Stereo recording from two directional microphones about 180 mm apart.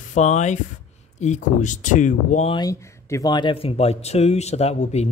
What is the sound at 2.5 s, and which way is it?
Speech, 20° left (ahead or behind).